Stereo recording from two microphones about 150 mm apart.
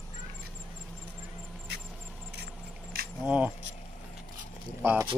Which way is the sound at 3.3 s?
10° right (ahead or behind).